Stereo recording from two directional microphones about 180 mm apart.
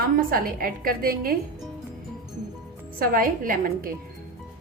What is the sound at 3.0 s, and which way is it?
Speech, 55° right (ahead or behind).